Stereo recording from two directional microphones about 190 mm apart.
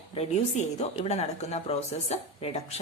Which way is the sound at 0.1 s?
35° left (ahead or behind).